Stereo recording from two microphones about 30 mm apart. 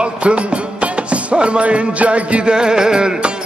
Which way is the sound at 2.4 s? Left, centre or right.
Right.